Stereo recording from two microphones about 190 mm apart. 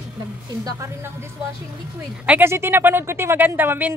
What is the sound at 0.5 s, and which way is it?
Speech, 20° right (ahead or behind).